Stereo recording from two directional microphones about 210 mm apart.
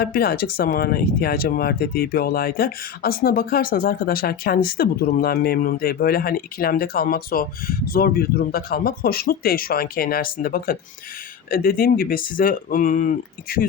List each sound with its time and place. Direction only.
0.0 s speech: 45° left (ahead or behind)